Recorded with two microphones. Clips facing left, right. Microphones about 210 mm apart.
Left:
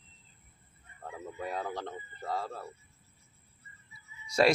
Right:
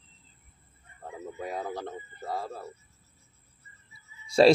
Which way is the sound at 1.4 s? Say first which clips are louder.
Right 2 dB; 10° right (ahead or behind).